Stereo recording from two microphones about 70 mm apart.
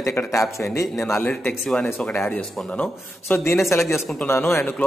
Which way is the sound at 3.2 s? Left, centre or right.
Left.